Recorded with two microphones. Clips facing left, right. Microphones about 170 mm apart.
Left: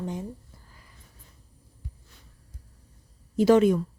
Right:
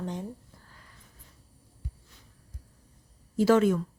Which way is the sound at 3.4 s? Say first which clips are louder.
Left 3 dB; 15° left (ahead or behind).